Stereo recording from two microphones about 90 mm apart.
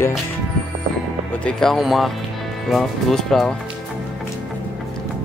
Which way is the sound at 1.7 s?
Centre (ahead or behind).